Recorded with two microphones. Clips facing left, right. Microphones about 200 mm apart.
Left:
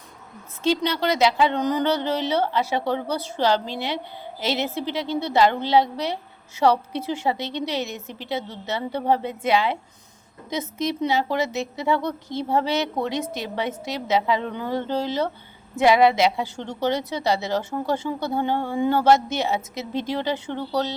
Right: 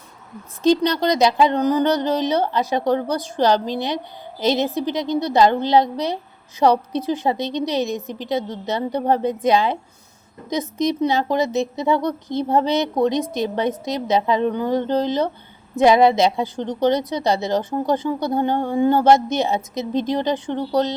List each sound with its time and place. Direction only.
0.6 s speech: 15° right (ahead or behind)
10.8 s speech: 20° right (ahead or behind)